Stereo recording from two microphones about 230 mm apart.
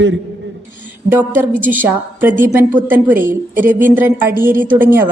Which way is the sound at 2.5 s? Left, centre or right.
Centre.